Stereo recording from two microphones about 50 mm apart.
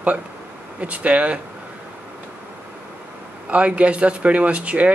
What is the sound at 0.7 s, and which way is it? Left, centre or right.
Speech, right.